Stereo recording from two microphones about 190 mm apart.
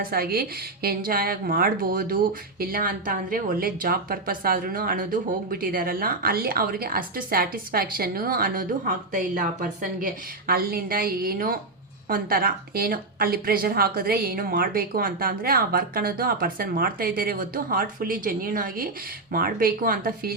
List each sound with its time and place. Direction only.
0.0 s a woman's voice: 50° right (ahead or behind)